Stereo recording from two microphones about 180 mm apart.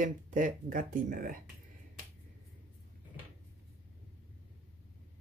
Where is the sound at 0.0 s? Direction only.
45° right (ahead or behind).